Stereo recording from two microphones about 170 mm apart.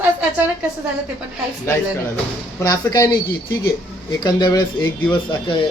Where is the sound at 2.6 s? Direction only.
20° left (ahead or behind).